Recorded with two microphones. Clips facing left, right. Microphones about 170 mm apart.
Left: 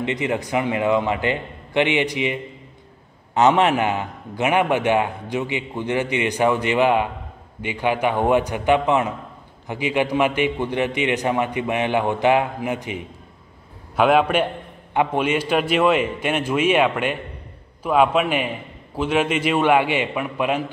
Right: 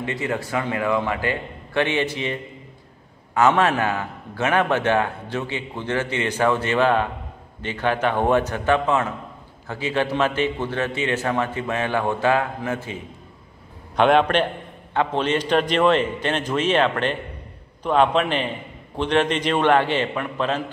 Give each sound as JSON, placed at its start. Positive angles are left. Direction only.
{"t": 0.0, "sound": "a man's voice", "side_deg": 20}
{"t": 13.9, "sound": "a man's voice", "side_deg": 5}